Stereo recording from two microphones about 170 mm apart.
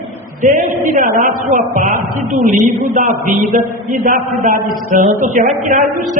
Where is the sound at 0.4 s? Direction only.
45° right (ahead or behind).